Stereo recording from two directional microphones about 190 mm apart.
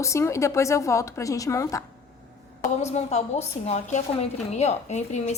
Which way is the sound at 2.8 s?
35° left (ahead or behind).